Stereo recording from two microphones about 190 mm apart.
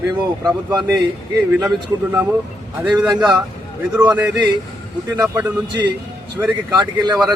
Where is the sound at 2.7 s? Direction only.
5° right (ahead or behind).